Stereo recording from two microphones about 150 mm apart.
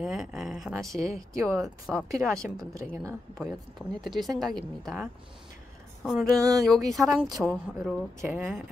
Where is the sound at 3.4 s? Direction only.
Centre (ahead or behind).